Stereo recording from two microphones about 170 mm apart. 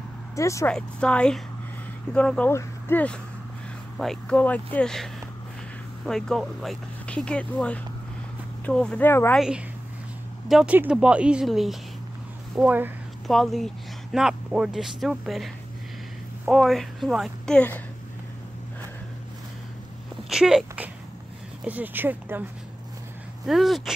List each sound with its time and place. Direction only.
0.4 s speech: 20° left (ahead or behind)
0.7 s speech: 5° left (ahead or behind)
10.5 s speech: 5° right (ahead or behind); by 17.8 s 10° left (ahead or behind)
20.2 s speech: 5° right (ahead or behind)
23.4 s speech: centre (ahead or behind)